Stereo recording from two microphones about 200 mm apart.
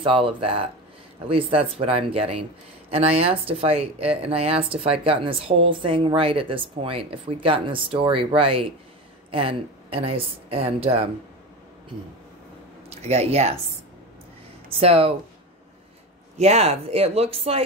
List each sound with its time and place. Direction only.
0.0 s speech: 25° right (ahead or behind)
12.9 s speech: 30° right (ahead or behind)
14.7 s speech: 30° right (ahead or behind)
16.3 s speech: 30° right (ahead or behind)